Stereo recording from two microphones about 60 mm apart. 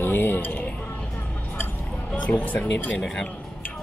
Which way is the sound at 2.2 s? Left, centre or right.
Left.